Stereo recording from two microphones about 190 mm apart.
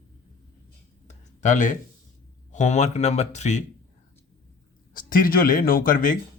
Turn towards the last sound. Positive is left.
turn(degrees=45)  # may be behind; listen again after turning